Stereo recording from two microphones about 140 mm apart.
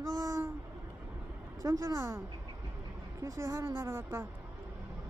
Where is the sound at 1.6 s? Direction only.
25° right (ahead or behind).